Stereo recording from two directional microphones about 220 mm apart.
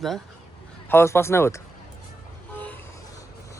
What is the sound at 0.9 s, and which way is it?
Speech, 10° left (ahead or behind).